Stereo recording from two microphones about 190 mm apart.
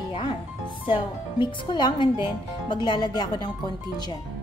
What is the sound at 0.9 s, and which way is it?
Speech, 25° left (ahead or behind).